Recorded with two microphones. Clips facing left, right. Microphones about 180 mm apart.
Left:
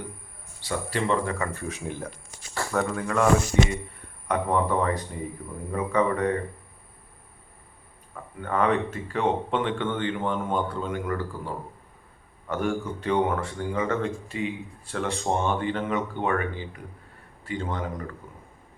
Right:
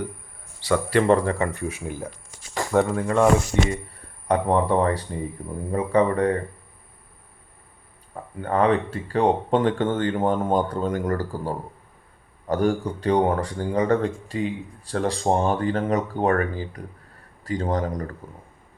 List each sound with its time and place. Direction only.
0.7 s speech: 65° right (ahead or behind)
1.1 s speech: 35° right (ahead or behind)
1.5 s speech: 15° right (ahead or behind)
2.7 s speech: 30° right (ahead or behind)
4.3 s speech: 30° right (ahead or behind)
8.1 s speech: 30° right (ahead or behind)